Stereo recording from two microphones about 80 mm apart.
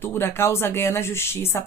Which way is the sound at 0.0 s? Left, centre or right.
Left.